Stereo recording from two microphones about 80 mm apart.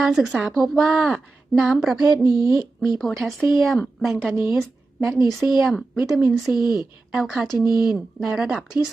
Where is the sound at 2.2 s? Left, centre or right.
Right.